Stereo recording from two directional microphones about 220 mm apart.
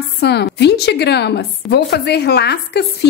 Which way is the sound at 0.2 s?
50° left (ahead or behind).